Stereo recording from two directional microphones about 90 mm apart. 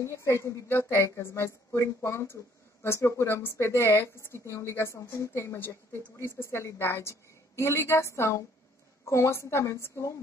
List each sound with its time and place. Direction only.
0.0 s a woman's voice: 30° left (ahead or behind)